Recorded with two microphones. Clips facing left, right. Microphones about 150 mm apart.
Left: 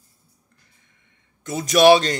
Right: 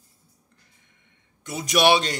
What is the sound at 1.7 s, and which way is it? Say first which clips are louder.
Speech: left 6 dB; 40° left (ahead or behind).